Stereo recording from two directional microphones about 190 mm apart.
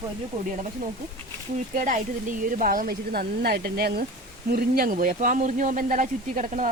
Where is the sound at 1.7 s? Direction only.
40° right (ahead or behind).